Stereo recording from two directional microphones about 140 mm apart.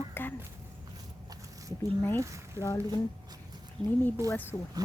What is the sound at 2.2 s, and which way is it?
Speech, 20° right (ahead or behind).